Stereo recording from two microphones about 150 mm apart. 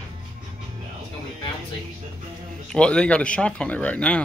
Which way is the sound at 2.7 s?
5° left (ahead or behind).